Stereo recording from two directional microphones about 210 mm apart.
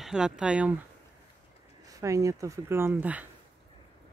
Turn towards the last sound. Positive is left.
turn(degrees=-10)  # may be behind; listen again after turning